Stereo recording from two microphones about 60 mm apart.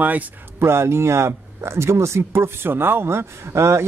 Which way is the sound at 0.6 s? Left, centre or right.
Right.